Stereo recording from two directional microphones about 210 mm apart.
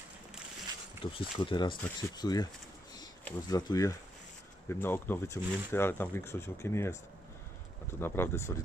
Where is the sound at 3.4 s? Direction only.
15° left (ahead or behind).